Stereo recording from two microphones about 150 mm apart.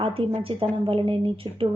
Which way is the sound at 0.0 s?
40° right (ahead or behind).